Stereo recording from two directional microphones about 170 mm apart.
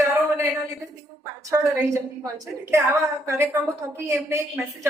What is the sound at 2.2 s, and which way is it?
A woman's voice, 15° right (ahead or behind).